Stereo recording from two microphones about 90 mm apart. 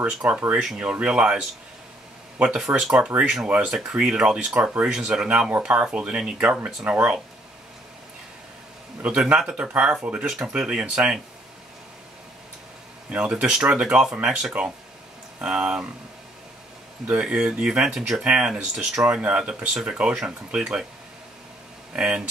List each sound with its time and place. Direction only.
0.0 s speech: 15° right (ahead or behind)
9.0 s speech: 10° right (ahead or behind)
13.1 s speech: 10° right (ahead or behind)
17.0 s speech: 15° right (ahead or behind)
21.9 s speech: 10° right (ahead or behind)